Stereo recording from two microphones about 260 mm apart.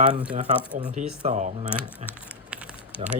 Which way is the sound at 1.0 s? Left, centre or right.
Right.